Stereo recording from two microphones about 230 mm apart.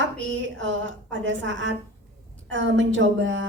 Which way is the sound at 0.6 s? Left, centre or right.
Right.